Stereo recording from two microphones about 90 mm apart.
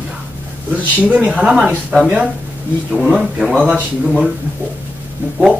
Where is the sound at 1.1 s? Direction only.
10° right (ahead or behind).